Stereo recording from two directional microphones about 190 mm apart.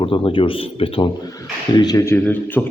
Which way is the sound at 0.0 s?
25° left (ahead or behind).